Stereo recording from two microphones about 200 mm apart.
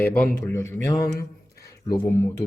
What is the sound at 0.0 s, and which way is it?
Speech, 10° left (ahead or behind).